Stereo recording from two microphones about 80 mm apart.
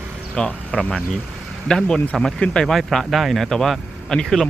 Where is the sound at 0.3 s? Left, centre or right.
Centre.